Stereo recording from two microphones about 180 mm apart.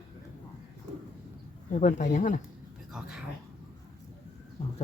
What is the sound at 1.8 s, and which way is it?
Speech, 45° left (ahead or behind).